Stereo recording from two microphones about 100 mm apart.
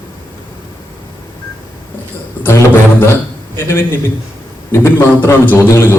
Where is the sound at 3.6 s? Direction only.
25° left (ahead or behind).